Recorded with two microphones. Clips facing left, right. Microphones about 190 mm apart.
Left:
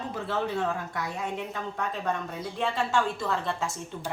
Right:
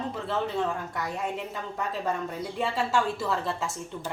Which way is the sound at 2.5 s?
5° right (ahead or behind).